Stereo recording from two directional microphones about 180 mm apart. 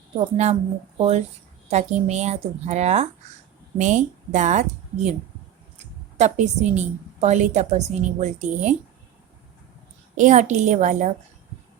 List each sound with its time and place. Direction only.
0.2 s speech: 35° right (ahead or behind)
10.2 s speech: 40° right (ahead or behind)